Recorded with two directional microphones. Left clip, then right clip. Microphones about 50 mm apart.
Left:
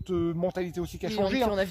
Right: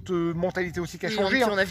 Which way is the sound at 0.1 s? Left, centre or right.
Right.